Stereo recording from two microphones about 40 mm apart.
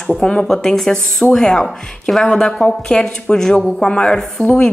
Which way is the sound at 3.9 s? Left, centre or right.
Left.